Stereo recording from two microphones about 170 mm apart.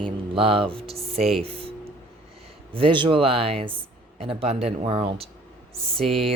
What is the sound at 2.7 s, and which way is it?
Speech, 30° right (ahead or behind).